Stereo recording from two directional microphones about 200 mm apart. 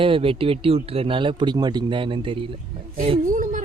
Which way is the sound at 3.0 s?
40° right (ahead or behind).